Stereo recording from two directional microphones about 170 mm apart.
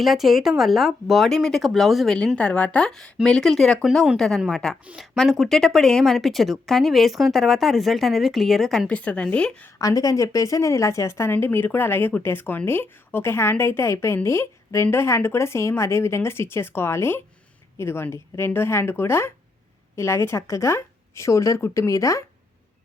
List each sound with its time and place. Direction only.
0.0 s speech: centre (ahead or behind)
9.7 s a woman's voice: 20° left (ahead or behind)